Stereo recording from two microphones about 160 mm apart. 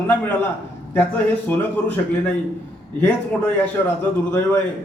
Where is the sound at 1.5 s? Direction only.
10° left (ahead or behind).